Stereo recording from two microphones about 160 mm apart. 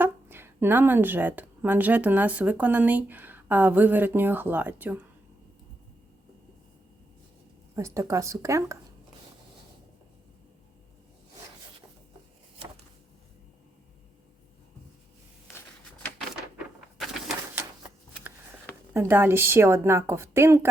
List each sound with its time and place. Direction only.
0.0 s a woman's voice: 15° right (ahead or behind)
7.8 s speech: 20° right (ahead or behind)
17.0 s bird: centre (ahead or behind)
18.9 s a woman's voice: 15° right (ahead or behind)